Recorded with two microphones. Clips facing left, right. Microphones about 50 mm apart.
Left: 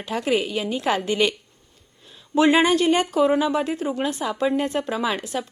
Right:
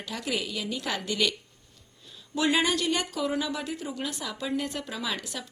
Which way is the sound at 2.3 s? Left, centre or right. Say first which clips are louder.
Left 8 dB; left.